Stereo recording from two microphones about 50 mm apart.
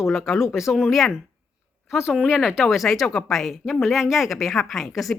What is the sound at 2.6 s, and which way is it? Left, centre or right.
Speech, centre.